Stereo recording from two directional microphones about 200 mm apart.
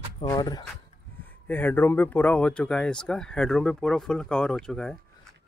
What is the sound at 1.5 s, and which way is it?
Speech, 10° left (ahead or behind).